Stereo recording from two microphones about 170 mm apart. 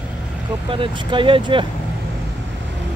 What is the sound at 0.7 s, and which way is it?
Speech, 30° right (ahead or behind).